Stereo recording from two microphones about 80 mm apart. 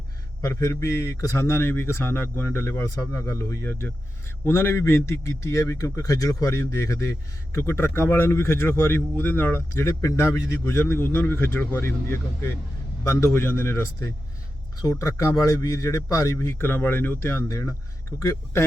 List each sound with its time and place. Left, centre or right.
0.4 s a man's voice: left
3.7 s a man's voice: left
14.8 s a man's voice: left
17.5 s a man's voice: left